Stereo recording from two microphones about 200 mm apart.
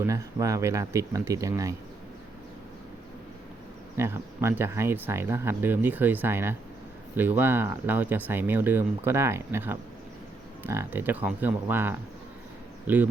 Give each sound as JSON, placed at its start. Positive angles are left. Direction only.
{"t": 0.0, "sound": "speech", "side_deg": -15}
{"t": 3.9, "sound": "speech", "side_deg": -10}